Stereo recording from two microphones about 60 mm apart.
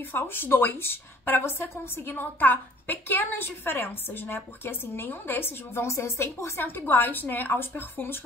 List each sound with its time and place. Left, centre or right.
0.1 s a woman's voice: left